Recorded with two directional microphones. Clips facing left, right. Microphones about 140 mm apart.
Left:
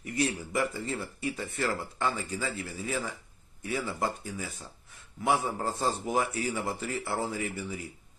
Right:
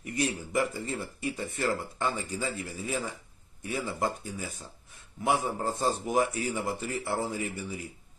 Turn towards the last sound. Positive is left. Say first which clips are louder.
# even
turn(degrees=-20)  # may be behind; listen again after turning